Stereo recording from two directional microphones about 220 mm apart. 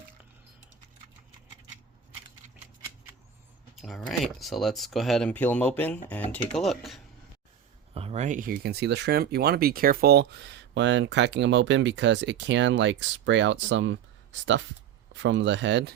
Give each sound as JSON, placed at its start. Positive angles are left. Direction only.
{"t": 3.8, "sound": "speech", "side_deg": 0}
{"t": 7.9, "sound": "speech", "side_deg": -30}